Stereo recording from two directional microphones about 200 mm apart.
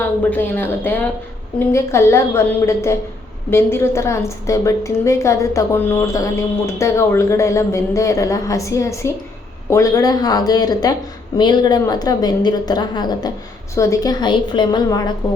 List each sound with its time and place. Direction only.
0.0 s a woman's voice: 10° left (ahead or behind)